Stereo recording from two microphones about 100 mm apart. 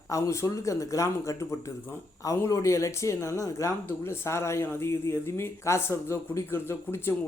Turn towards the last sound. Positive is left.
turn(degrees=25)  # may be behind; listen again after turning